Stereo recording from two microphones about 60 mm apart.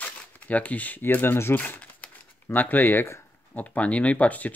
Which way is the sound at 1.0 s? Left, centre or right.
Left.